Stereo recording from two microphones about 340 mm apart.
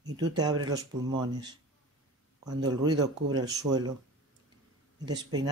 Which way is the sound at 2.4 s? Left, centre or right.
Centre.